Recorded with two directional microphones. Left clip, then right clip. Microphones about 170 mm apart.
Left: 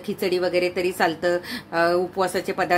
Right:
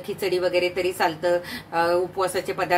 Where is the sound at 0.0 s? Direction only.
40° left (ahead or behind).